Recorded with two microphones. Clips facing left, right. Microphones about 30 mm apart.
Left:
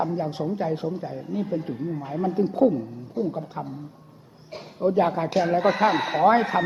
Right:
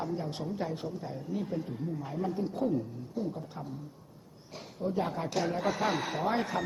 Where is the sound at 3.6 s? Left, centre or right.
Left.